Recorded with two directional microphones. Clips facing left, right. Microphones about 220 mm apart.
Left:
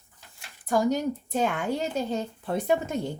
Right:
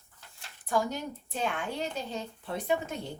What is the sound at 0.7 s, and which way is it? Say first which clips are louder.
A woman's voice: left 7 dB; 40° left (ahead or behind).